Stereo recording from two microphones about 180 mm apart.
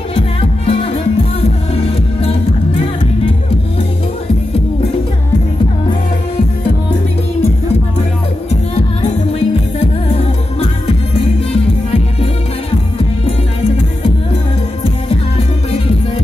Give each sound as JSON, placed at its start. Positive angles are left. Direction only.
{"t": 0.7, "sound": "music", "side_deg": 30}
{"t": 8.5, "sound": "music", "side_deg": 35}
{"t": 15.0, "sound": "music", "side_deg": 30}